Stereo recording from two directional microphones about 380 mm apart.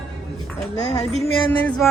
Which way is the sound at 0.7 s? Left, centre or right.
Centre.